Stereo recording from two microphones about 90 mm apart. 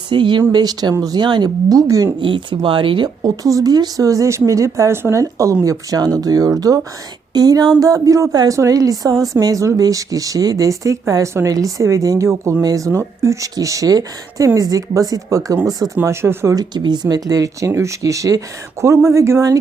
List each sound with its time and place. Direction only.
0.1 s speech: 60° right (ahead or behind)
1.7 s speech: 40° right (ahead or behind)
2.2 s speech: 65° right (ahead or behind)
3.2 s speech: 40° right (ahead or behind)
16.0 s speech: 30° right (ahead or behind)
16.6 s speech: 55° right (ahead or behind); by 19.5 s 35° right (ahead or behind)